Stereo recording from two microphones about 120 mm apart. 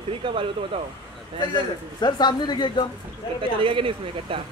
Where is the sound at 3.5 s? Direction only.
45° right (ahead or behind).